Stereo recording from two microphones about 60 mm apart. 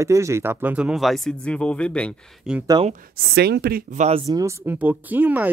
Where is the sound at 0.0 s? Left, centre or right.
Right.